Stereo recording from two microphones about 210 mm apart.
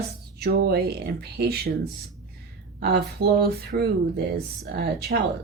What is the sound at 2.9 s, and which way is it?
Speech, 50° right (ahead or behind).